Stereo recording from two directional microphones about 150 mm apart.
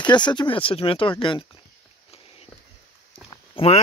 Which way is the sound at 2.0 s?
40° left (ahead or behind).